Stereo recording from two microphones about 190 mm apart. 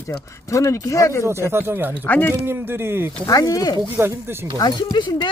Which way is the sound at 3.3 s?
20° left (ahead or behind).